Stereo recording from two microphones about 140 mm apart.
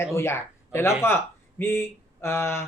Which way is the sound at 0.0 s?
20° left (ahead or behind).